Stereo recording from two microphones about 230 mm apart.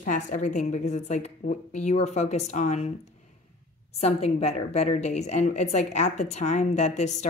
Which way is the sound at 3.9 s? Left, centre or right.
Left.